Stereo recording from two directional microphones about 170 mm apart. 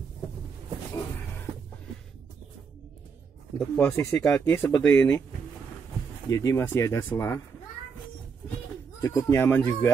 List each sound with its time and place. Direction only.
3.5 s speech: 10° left (ahead or behind)
6.2 s speech: 20° left (ahead or behind)
9.0 s speech: 15° left (ahead or behind)